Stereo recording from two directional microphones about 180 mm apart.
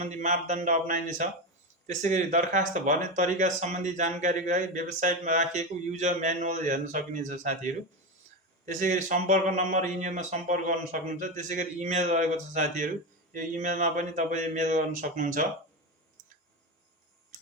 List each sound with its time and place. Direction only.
0.0 s speech: 45° right (ahead or behind)